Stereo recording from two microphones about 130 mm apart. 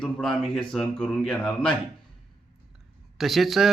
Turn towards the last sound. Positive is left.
turn(degrees=0)  # may be behind; listen again after turning